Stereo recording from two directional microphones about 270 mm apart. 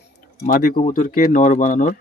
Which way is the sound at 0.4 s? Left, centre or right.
Left.